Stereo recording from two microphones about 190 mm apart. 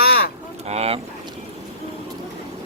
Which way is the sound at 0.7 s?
30° right (ahead or behind).